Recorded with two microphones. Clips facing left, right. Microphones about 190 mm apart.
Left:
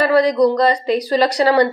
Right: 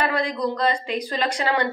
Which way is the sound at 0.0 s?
40° left (ahead or behind).